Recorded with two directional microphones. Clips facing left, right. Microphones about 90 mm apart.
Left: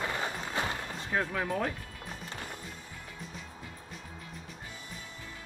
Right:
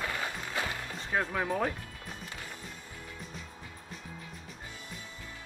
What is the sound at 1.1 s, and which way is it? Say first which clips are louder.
Speech: right 1 dB; 5° right (ahead or behind).